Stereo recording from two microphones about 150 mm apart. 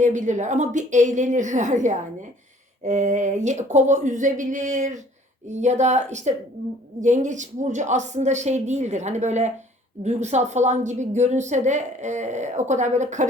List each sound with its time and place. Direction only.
0.0 s a woman's voice: 55° right (ahead or behind)